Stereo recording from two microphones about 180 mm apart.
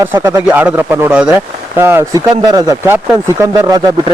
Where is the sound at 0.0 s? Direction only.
15° right (ahead or behind).